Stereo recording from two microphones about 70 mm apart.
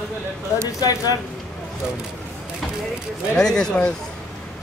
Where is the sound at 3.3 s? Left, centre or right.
Centre.